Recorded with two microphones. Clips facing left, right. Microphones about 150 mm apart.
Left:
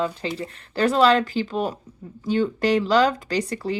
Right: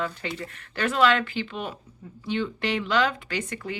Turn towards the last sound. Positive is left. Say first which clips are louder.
# left 7 dB
turn(degrees=35)  # may be behind; listen again after turning